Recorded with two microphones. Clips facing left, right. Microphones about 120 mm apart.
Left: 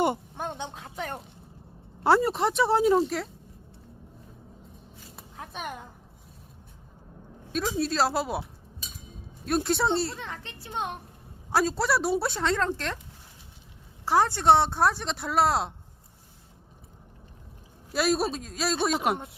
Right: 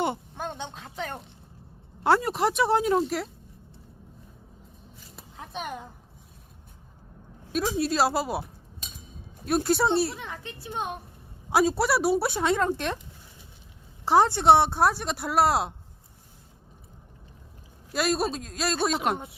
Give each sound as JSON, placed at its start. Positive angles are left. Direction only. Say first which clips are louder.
{"t": 0.4, "sound": "speech", "louder": "even", "side_deg": 10}
{"t": 7.5, "sound": "speech", "louder": "right 2 dB", "side_deg": -5}
{"t": 9.5, "sound": "speech", "louder": "right 2 dB", "side_deg": -5}
{"t": 14.0, "sound": "speech", "louder": "right 3 dB", "side_deg": -20}
{"t": 17.9, "sound": "speech", "louder": "left 1 dB", "side_deg": 0}